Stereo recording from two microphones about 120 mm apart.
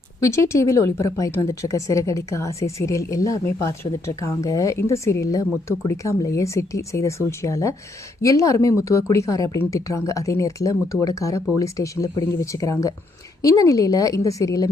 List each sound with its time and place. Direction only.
0.2 s a woman's voice: 25° left (ahead or behind)